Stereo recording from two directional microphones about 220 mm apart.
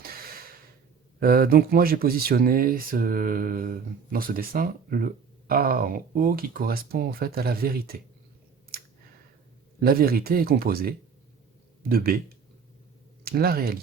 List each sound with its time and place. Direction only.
0.0 s a sound: 40° right (ahead or behind)
1.2 s speech: 45° right (ahead or behind)
9.8 s speech: 45° right (ahead or behind)
13.2 s speech: 45° right (ahead or behind)